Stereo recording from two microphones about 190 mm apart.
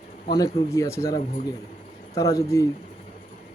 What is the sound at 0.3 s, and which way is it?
Speech, 20° left (ahead or behind).